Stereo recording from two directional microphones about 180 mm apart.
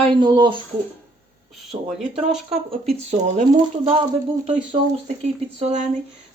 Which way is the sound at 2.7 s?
35° right (ahead or behind).